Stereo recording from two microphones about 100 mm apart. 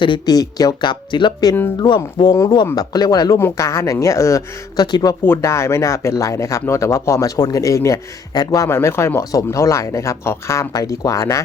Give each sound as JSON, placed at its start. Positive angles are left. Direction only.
{"t": 0.0, "sound": "speech", "side_deg": 50}
{"t": 4.9, "sound": "speech", "side_deg": 45}
{"t": 5.2, "sound": "speech", "side_deg": 25}